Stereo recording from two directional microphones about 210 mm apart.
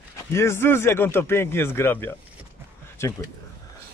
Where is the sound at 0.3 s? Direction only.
15° left (ahead or behind).